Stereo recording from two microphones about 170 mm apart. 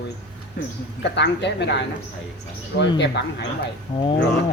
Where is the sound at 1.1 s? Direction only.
90° left.